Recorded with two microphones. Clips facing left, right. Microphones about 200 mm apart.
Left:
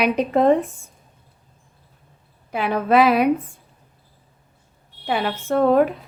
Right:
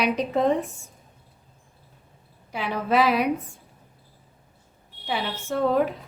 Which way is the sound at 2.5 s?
55° left (ahead or behind).